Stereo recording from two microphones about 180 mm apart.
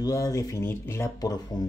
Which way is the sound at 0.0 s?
20° left (ahead or behind).